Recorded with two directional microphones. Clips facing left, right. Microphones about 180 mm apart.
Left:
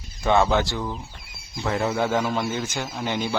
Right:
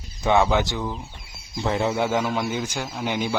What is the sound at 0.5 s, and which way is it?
Speech, 15° right (ahead or behind).